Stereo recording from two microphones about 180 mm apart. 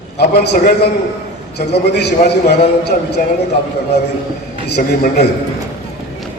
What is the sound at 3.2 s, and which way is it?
Speech, 50° left (ahead or behind).